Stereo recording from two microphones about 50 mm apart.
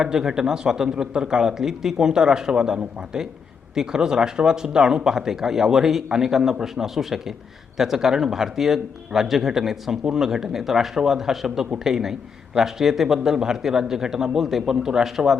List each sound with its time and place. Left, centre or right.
0.0 s speech: centre